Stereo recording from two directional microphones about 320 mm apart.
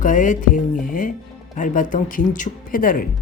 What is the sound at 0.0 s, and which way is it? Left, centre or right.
Speech, left.